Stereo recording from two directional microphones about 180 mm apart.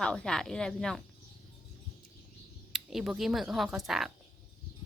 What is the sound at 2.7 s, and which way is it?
Speech, centre (ahead or behind).